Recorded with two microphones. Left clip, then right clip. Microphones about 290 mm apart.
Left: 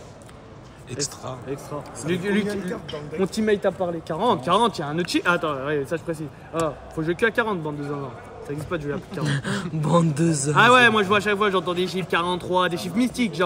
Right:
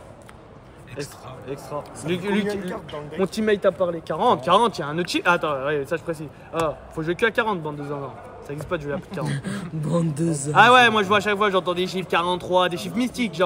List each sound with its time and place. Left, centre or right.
0.9 s speech: centre
9.2 s speech: centre
10.5 s speech: centre